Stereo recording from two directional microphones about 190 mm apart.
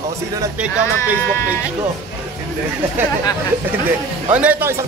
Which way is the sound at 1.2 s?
15° left (ahead or behind).